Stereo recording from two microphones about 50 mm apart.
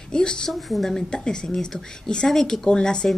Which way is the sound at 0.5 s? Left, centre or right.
Centre.